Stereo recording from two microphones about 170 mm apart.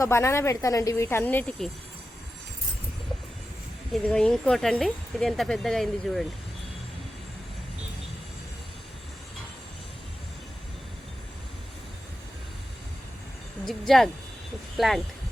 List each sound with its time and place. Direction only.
0.0 s speech: 15° left (ahead or behind)
3.9 s speech: 5° left (ahead or behind)
13.7 s speech: centre (ahead or behind)